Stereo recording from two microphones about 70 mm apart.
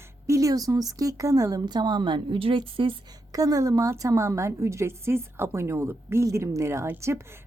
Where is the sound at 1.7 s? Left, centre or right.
Right.